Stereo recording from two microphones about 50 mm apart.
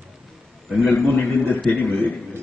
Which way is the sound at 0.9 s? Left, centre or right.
Left.